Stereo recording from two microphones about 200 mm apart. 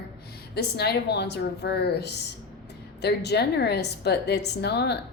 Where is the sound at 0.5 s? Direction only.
55° left (ahead or behind).